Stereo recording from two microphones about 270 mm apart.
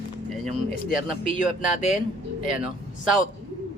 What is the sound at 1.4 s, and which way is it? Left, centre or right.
Speech, left.